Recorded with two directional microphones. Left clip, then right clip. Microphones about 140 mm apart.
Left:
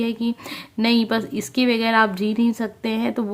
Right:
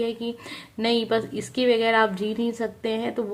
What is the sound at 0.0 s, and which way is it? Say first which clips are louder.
A woman's voice: left 2 dB; 35° left (ahead or behind).